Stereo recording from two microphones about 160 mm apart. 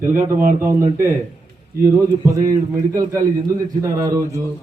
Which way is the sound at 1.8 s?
20° right (ahead or behind).